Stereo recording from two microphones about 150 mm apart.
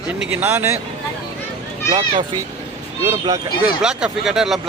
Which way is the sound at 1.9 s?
25° right (ahead or behind).